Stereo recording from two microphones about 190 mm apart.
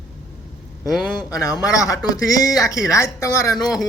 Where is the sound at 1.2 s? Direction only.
20° left (ahead or behind).